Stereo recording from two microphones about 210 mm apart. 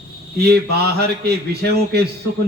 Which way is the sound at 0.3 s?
50° right (ahead or behind).